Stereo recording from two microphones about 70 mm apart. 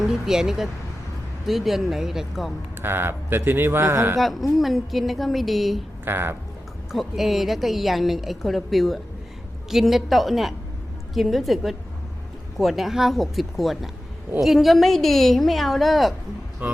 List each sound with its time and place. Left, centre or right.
0.1 s a woman's voice: centre
2.8 s speech: right
4.2 s a woman's voice: centre
6.1 s speech: right
6.9 s a woman's voice: centre
16.6 s speech: right